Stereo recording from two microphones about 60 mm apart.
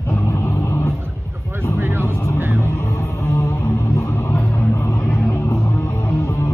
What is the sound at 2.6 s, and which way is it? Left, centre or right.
Music, left.